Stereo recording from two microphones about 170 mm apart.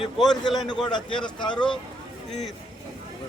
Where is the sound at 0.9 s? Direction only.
25° left (ahead or behind).